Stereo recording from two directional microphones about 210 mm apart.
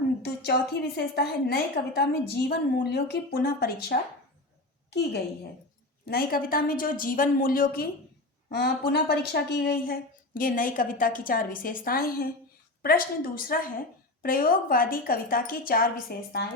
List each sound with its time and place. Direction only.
0.2 s a woman's voice: 50° left (ahead or behind)
6.1 s a woman's voice: 45° left (ahead or behind)